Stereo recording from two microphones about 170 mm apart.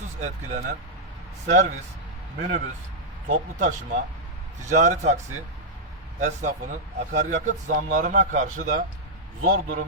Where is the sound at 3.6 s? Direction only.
50° right (ahead or behind).